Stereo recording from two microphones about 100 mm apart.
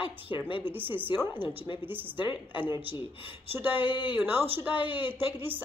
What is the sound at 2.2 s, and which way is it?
Speech, 55° left (ahead or behind).